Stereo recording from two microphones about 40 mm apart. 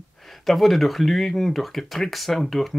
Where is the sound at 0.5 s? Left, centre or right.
Centre.